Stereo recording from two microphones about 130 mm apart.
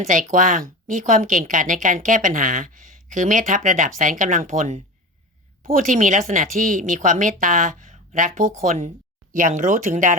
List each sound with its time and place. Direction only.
0.1 s speech: 80° right
5.6 s speech: 85° right